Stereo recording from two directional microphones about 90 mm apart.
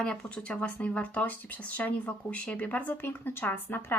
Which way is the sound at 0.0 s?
10° left (ahead or behind).